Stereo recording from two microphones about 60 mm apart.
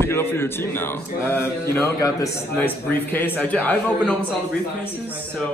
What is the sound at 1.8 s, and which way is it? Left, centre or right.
Speech, left.